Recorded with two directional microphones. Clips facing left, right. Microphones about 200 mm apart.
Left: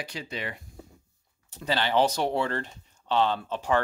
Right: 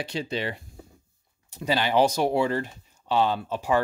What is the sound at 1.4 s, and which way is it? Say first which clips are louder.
Speech: right 3 dB; 10° right (ahead or behind).